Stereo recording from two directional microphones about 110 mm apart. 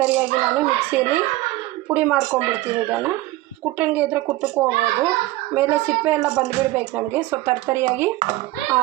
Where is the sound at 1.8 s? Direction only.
15° right (ahead or behind).